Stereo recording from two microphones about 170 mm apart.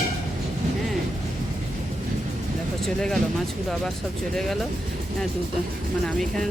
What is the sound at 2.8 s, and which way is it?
Speech, 5° left (ahead or behind).